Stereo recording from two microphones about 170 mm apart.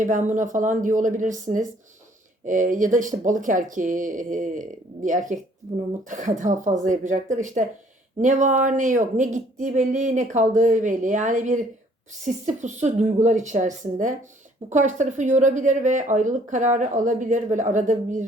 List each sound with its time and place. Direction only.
0.0 s speech: 50° right (ahead or behind)